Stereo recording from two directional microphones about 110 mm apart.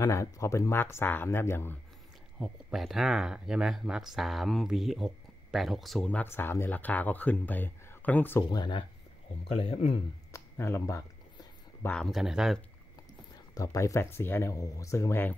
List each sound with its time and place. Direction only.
0.0 s speech: 25° left (ahead or behind)
2.3 s speech: centre (ahead or behind)
6.0 s speech: 15° left (ahead or behind)
8.5 s speech: 40° left (ahead or behind)
10.3 s speech: 25° left (ahead or behind)
11.9 s speech: centre (ahead or behind)
13.6 s speech: 30° left (ahead or behind)